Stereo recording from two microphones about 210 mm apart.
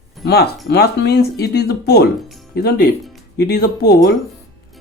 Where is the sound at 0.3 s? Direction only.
50° left (ahead or behind).